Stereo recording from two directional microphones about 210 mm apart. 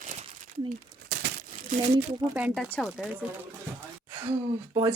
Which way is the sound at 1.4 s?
35° right (ahead or behind).